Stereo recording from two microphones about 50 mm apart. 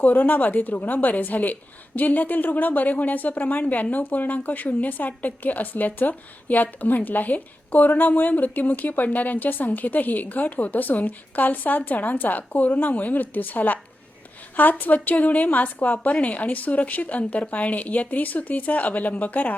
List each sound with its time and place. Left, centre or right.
0.0 s a woman's voice: left